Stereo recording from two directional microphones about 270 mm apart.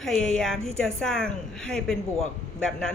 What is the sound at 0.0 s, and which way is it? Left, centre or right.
A woman's voice, centre.